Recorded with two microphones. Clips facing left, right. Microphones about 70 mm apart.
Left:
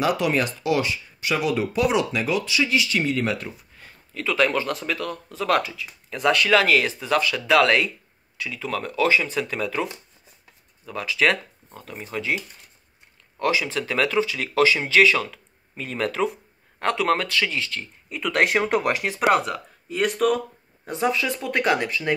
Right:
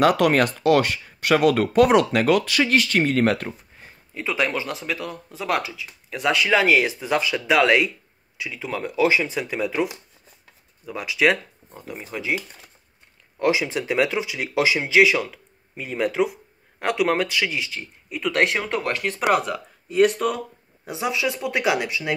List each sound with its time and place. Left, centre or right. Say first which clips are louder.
0.0 s speech: right 5 dB; right
3.7 s speech: even; right; by 6.4 s centre
6.4 s speech: right 2 dB; centre
13.4 s speech: right 2 dB; right; by 18.6 s centre
18.6 s speech: left 3 dB; centre
19.2 s speech: left 1 dB; centre